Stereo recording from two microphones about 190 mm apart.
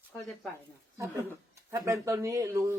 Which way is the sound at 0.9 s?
15° right (ahead or behind).